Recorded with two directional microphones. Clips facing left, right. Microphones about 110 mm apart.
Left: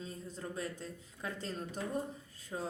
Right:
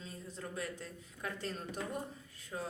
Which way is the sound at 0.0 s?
35° left (ahead or behind).